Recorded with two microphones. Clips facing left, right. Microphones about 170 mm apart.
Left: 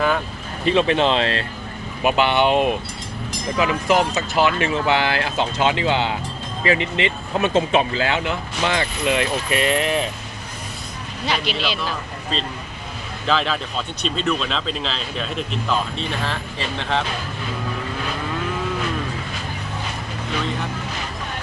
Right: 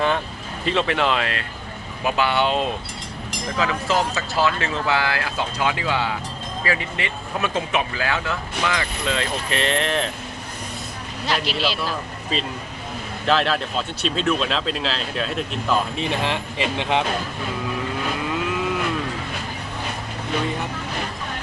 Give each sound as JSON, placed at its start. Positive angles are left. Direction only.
{"t": 0.6, "sound": "speech", "side_deg": 20}
{"t": 9.0, "sound": "speech", "side_deg": 15}
{"t": 11.3, "sound": "speech", "side_deg": 0}
{"t": 16.0, "sound": "speech", "side_deg": -15}